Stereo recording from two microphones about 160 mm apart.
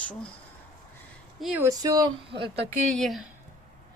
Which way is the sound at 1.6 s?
20° right (ahead or behind).